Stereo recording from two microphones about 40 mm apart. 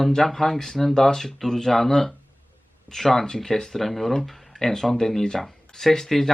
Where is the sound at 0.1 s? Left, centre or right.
Centre.